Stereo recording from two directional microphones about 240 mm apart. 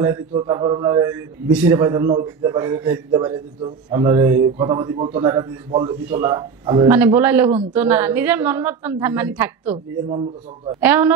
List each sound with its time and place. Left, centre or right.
0.3 s a man's voice: centre
10.0 s a man's voice: right
10.8 s a man's voice: centre